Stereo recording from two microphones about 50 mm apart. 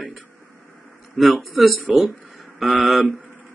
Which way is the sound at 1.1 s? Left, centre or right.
Centre.